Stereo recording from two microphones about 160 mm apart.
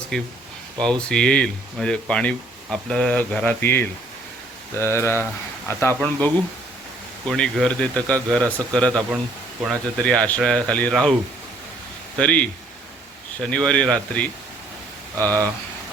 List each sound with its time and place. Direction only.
0.1 s speech: 5° left (ahead or behind)
12.2 s speech: 5° left (ahead or behind)